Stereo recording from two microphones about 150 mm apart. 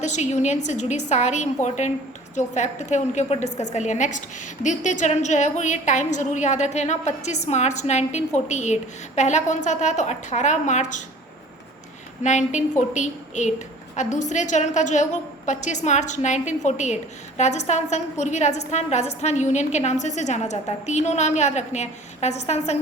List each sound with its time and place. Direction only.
0.0 s a woman's voice: 50° left (ahead or behind)
12.2 s a woman's voice: 55° left (ahead or behind)